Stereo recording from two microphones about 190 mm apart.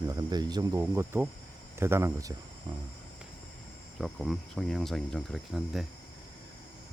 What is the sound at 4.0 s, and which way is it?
Speech, centre (ahead or behind).